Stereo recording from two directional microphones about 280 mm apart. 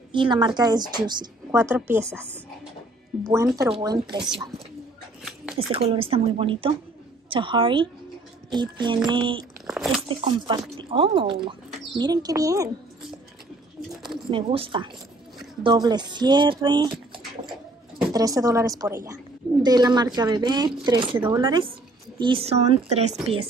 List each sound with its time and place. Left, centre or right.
0.1 s a woman's voice: centre
3.3 s a woman's voice: centre
4.3 s speech: centre
5.2 s a sound: centre
5.7 s a woman's voice: centre
9.7 s biting: centre
10.0 s a woman's voice: centre
14.1 s a woman's voice: centre
18.1 s a woman's voice: centre